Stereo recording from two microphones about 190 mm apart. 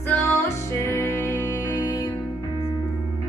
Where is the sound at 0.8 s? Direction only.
10° left (ahead or behind).